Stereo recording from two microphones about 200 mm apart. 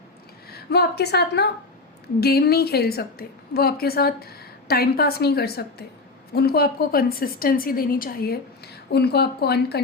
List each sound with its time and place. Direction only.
0.5 s a woman's voice: 55° left (ahead or behind)